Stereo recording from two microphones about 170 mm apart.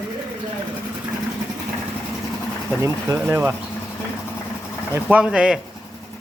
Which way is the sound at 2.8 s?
15° right (ahead or behind).